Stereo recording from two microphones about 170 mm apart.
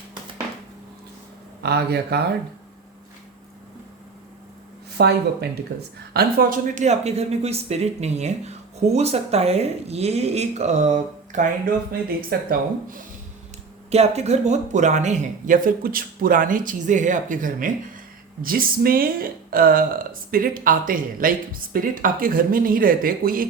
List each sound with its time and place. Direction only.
1.6 s speech: 70° right (ahead or behind)
4.9 s speech: 75° right (ahead or behind)
6.1 s speech: 60° right (ahead or behind)
12.3 s a woman's voice: 60° right (ahead or behind)
13.9 s a woman's voice: 40° right (ahead or behind); by 23.5 s 55° right (ahead or behind)